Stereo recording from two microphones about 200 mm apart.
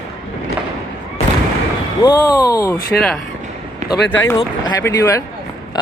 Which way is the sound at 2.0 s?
20° left (ahead or behind).